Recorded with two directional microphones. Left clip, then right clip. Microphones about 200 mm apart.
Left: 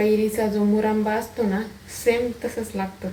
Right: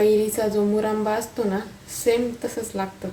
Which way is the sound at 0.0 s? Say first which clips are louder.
Right 2 dB; 15° right (ahead or behind).